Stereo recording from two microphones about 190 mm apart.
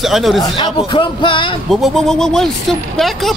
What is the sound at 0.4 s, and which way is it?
A man's voice, 25° left (ahead or behind).